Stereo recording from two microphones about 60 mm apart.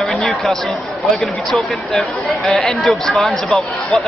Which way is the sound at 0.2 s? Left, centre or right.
Centre.